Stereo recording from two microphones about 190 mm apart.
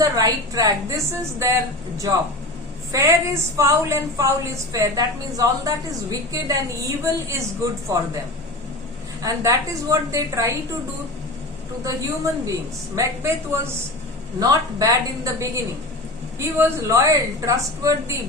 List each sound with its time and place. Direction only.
0.0 s a woman's voice: 20° right (ahead or behind)
2.9 s a woman's voice: 15° right (ahead or behind)
9.2 s a woman's voice: 15° right (ahead or behind)
11.9 s a woman's voice: 15° right (ahead or behind)